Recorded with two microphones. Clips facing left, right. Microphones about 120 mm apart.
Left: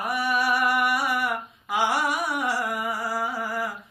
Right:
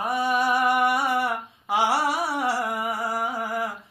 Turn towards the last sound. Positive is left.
turn(degrees=-20)  # may be behind; listen again after turning